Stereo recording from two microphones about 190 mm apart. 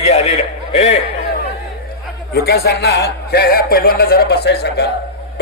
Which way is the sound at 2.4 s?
55° left (ahead or behind).